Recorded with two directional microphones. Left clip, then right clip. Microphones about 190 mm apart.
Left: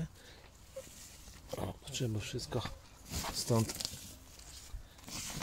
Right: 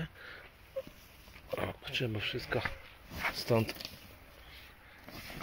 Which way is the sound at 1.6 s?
5° left (ahead or behind).